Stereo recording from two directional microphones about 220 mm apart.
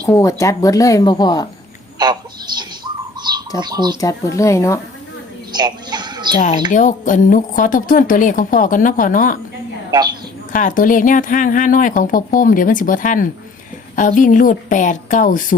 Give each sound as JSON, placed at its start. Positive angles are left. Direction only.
{"t": 0.1, "sound": "speech", "side_deg": 15}
{"t": 2.0, "sound": "a sound", "side_deg": -20}
{"t": 2.6, "sound": "bird", "side_deg": -20}
{"t": 3.6, "sound": "speech", "side_deg": -20}
{"t": 4.4, "sound": "speech", "side_deg": 15}
{"t": 5.5, "sound": "a sound", "side_deg": -20}
{"t": 6.7, "sound": "a woman's voice", "side_deg": 35}
{"t": 9.9, "sound": "a woman's voice", "side_deg": -20}
{"t": 10.5, "sound": "a woman's voice", "side_deg": 35}